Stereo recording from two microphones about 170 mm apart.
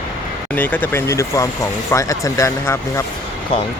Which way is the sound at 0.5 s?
10° left (ahead or behind).